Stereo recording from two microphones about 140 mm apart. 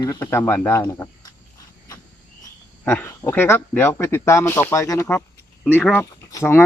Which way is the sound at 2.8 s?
15° left (ahead or behind).